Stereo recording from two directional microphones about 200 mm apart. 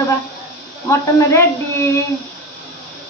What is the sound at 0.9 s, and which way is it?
A woman's voice, 15° left (ahead or behind).